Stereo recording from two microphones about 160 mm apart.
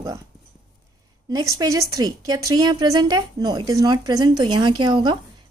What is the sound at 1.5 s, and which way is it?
A woman's voice, 20° right (ahead or behind).